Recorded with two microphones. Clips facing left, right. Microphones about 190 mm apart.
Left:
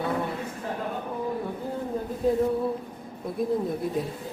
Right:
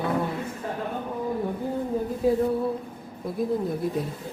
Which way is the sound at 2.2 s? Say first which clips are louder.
Right 1 dB; 10° right (ahead or behind).